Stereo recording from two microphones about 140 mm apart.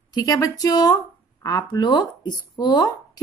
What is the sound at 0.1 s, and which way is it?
A woman's voice, 25° left (ahead or behind).